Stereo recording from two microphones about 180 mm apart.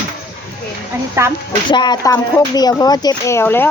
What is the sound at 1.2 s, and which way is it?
Speech, 15° right (ahead or behind).